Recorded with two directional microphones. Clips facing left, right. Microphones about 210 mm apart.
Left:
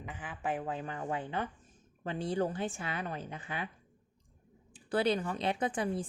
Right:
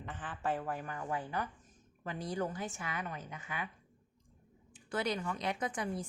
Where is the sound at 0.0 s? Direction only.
10° left (ahead or behind); by 3.7 s 30° left (ahead or behind).